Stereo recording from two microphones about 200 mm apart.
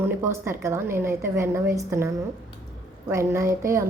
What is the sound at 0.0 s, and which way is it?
A woman's voice, 10° right (ahead or behind).